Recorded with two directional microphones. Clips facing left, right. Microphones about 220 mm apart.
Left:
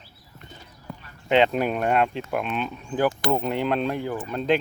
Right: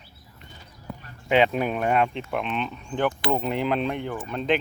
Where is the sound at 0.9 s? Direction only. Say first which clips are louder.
Right 1 dB; 5° right (ahead or behind).